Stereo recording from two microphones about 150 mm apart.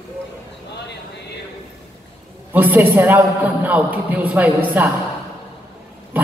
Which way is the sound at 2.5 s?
10° right (ahead or behind).